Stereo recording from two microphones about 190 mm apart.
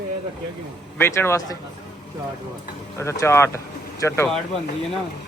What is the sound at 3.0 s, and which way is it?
Speech, 15° left (ahead or behind).